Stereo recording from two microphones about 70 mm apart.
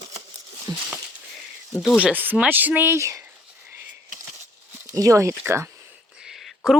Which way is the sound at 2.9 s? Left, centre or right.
Right.